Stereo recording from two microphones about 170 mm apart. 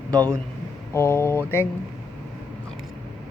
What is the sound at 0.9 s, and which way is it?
Speech, 15° left (ahead or behind).